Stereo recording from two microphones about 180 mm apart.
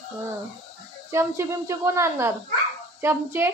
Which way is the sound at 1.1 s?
15° right (ahead or behind).